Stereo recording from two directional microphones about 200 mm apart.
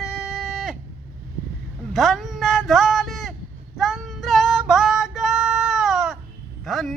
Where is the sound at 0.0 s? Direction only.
Centre (ahead or behind).